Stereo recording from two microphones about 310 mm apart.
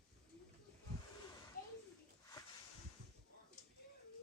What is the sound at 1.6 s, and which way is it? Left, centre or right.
Children playing, left.